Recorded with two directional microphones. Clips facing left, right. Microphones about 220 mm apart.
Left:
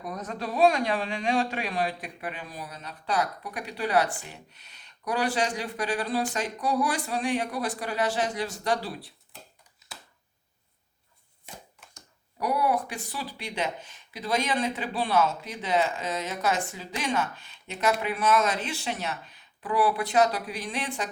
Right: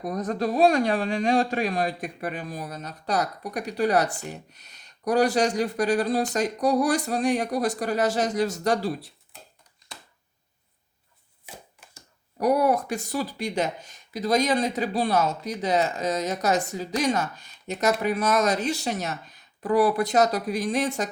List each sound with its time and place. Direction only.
0.0 s speech: 40° right (ahead or behind)
12.4 s speech: 45° right (ahead or behind)